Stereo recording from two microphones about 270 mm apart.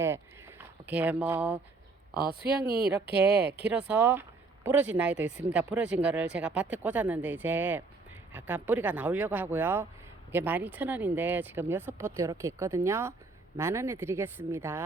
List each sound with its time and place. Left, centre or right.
0.0 s a sound: centre
2.4 s speech: right
3.6 s speech: centre